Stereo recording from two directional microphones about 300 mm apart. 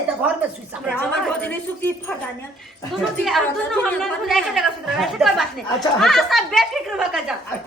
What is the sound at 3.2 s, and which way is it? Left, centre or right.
A woman's voice, centre.